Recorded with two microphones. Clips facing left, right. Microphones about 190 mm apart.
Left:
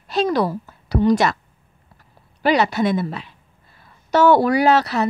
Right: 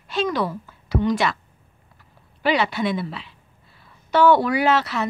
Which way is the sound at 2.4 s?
40° left (ahead or behind).